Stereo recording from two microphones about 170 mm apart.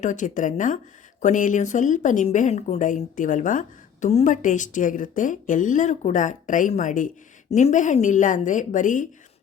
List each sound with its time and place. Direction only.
0.0 s a woman's voice: 45° left (ahead or behind)